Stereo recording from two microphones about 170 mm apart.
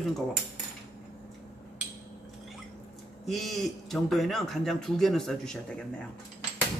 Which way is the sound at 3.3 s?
Centre (ahead or behind).